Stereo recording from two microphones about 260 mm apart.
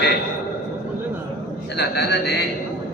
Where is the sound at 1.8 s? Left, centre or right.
Left.